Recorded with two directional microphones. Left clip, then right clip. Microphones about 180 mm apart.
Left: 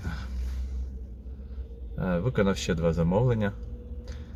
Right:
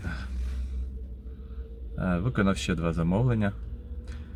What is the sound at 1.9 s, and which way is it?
Speech, 15° right (ahead or behind).